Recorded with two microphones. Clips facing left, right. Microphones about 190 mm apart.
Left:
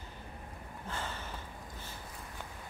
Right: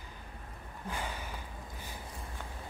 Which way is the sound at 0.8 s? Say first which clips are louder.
Right 2 dB; 15° right (ahead or behind).